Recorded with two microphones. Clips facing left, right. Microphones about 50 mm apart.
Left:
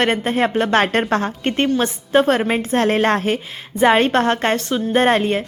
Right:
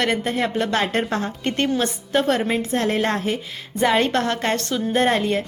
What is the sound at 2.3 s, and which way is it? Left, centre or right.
Speech, left.